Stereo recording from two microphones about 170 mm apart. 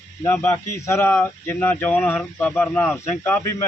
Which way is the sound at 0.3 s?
15° left (ahead or behind).